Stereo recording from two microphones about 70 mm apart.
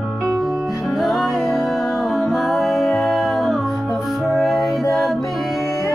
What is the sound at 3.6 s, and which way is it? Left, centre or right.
Music, centre.